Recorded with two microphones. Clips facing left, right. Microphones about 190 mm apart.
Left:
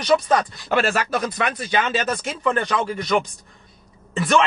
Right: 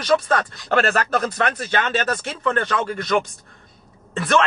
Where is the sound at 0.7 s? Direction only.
5° left (ahead or behind).